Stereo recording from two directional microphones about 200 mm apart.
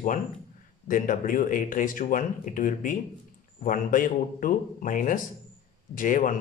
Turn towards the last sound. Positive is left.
turn(degrees=40)  # may be behind; listen again after turning